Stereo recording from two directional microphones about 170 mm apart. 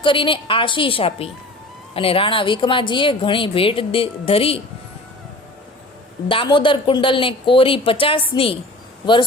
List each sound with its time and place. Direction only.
0.0 s a woman's voice: 30° left (ahead or behind)
6.2 s a woman's voice: 30° left (ahead or behind)